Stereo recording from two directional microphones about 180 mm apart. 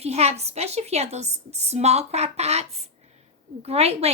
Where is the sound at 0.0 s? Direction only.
35° right (ahead or behind).